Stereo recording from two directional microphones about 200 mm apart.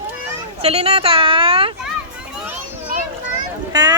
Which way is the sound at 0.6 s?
30° right (ahead or behind).